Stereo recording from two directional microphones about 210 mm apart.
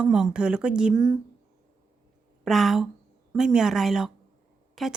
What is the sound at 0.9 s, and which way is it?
Speech, 15° right (ahead or behind).